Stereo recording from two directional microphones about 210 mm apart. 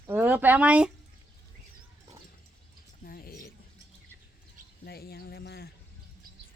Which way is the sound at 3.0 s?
45° left (ahead or behind).